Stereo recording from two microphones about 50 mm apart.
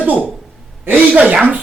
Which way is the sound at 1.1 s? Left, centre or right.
Right.